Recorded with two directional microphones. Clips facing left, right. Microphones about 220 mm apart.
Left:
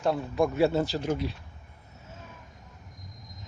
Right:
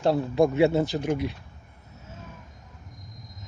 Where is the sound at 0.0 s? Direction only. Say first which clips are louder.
Right 4 dB; 30° right (ahead or behind); by 1.3 s 15° right (ahead or behind).